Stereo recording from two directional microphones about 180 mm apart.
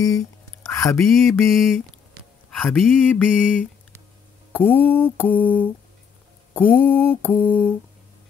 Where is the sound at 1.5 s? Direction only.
Centre (ahead or behind).